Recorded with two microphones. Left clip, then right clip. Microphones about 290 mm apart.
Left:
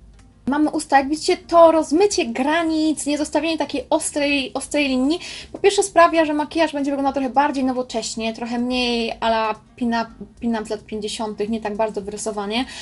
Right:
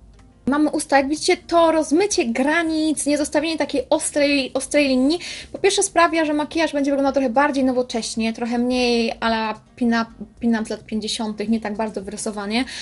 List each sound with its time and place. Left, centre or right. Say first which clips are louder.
0.5 s a woman's voice: even; right